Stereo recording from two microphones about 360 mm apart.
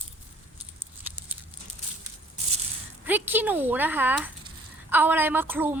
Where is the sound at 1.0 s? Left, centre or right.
Centre.